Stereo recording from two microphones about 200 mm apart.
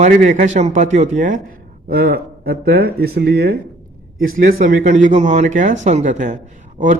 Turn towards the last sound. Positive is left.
turn(degrees=-40)  # may be behind; listen again after turning